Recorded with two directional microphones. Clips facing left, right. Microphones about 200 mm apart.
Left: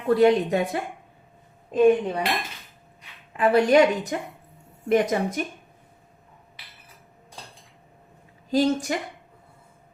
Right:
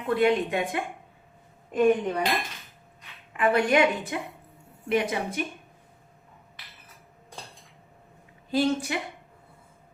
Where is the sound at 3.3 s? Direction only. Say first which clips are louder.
Left 5 dB; 35° left (ahead or behind).